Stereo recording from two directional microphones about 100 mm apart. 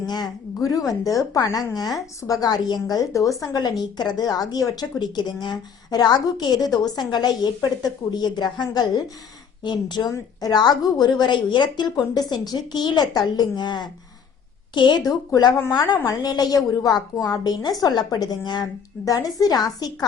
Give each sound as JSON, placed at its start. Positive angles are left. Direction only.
{"t": 0.1, "sound": "a woman's voice", "side_deg": 40}